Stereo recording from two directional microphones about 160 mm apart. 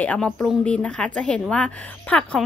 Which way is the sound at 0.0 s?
10° left (ahead or behind).